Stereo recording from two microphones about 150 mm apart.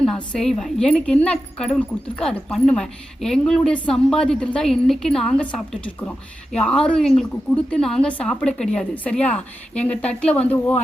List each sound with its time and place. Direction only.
0.3 s speech: 5° left (ahead or behind)